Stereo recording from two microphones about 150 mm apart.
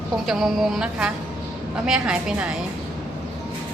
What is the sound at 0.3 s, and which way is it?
A woman's voice, centre (ahead or behind).